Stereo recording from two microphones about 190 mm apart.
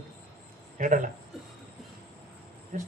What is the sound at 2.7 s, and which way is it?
Speech, 40° right (ahead or behind).